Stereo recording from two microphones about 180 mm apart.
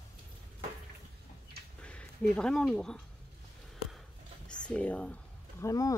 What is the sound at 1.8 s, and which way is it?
Speech, 5° left (ahead or behind).